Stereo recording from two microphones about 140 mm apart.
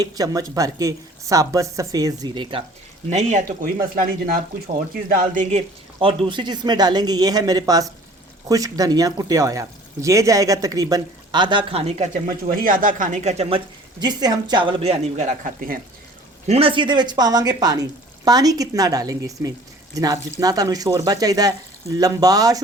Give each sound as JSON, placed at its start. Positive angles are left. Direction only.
{"t": 0.0, "sound": "speech", "side_deg": -25}
{"t": 3.1, "sound": "speech", "side_deg": -55}
{"t": 3.4, "sound": "speech", "side_deg": -85}
{"t": 6.0, "sound": "speech", "side_deg": -40}
{"t": 12.5, "sound": "speech", "side_deg": -80}
{"t": 14.0, "sound": "speech", "side_deg": -30}
{"t": 16.5, "sound": "speech", "side_deg": -40}